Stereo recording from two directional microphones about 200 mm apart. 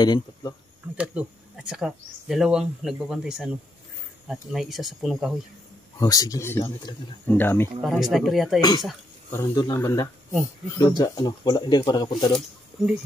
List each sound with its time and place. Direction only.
0.0 s speech: 20° left (ahead or behind)
0.9 s speech: 5° right (ahead or behind)
5.9 s speech: 20° left (ahead or behind)
7.8 s speech: centre (ahead or behind)
8.5 s speech: 20° left (ahead or behind)
12.3 s speech: centre (ahead or behind)